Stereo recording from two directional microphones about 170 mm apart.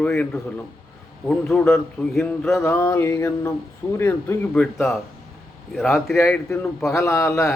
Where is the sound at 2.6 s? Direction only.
10° left (ahead or behind).